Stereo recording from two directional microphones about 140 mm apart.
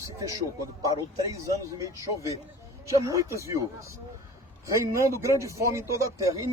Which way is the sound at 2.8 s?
25° right (ahead or behind).